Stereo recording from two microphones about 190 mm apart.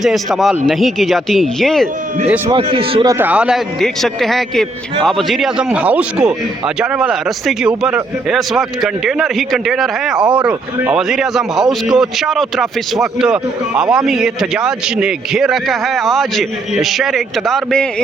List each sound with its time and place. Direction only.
0.0 s speech: centre (ahead or behind)
2.5 s a man's voice: 25° right (ahead or behind)
3.2 s speech: 5° right (ahead or behind)